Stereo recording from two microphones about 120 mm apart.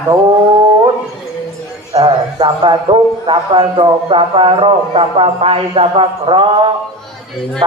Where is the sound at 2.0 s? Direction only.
45° right (ahead or behind).